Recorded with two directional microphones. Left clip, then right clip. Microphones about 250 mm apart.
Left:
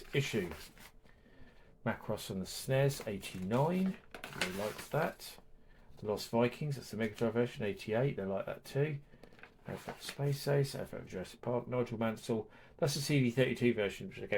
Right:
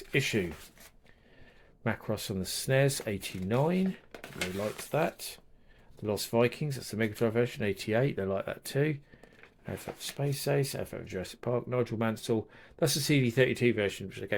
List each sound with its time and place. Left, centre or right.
0.1 s speech: right
1.8 s speech: right
4.9 s speech: right